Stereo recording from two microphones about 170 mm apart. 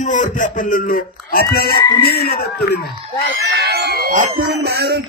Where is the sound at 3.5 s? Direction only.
70° right (ahead or behind); by 4.3 s 55° right (ahead or behind).